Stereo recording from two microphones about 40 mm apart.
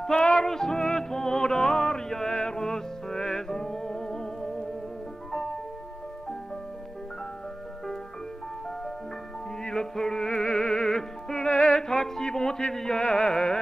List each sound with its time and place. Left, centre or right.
0.0 s music: centre
9.6 s music: centre